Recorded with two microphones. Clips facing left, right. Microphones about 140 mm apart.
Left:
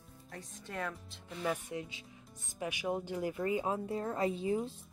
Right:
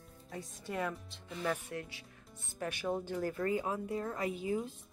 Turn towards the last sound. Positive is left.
turn(degrees=30)  # may be behind; listen again after turning